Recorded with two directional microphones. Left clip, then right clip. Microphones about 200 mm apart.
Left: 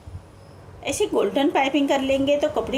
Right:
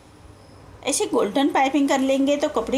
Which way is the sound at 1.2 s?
20° right (ahead or behind).